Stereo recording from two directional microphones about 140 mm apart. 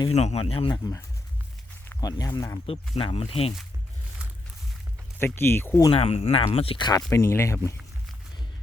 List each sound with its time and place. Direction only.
0.1 s speech: 50° left (ahead or behind)
2.0 s speech: 25° left (ahead or behind)
2.9 s speech: 45° left (ahead or behind)
5.2 s speech: 15° left (ahead or behind)
5.9 s speech: 45° left (ahead or behind)
7.1 s speech: 20° left (ahead or behind)